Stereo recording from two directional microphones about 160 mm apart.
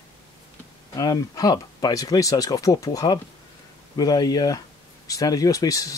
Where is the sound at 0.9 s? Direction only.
25° left (ahead or behind).